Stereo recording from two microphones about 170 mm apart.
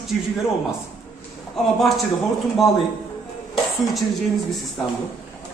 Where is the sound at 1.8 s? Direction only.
Centre (ahead or behind).